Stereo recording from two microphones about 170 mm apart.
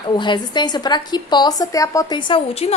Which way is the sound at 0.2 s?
25° left (ahead or behind).